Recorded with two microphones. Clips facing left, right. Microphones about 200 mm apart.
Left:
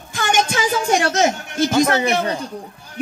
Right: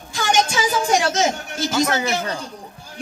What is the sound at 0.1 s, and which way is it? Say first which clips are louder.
Music: even; 55° left (ahead or behind).